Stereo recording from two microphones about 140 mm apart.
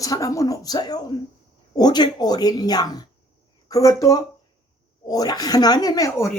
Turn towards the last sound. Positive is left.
turn(degrees=25)  # may be behind; listen again after turning